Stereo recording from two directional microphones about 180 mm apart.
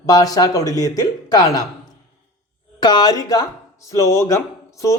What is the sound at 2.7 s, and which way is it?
Speech, 25° left (ahead or behind).